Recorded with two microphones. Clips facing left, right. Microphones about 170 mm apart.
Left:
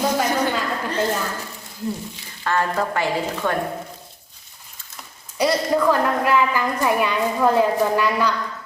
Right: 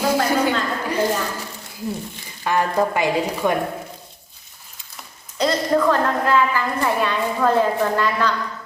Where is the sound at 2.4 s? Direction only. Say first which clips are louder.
Right 2 dB; 15° right (ahead or behind).